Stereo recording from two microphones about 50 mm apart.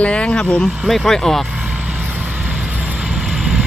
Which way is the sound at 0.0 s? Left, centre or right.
Left.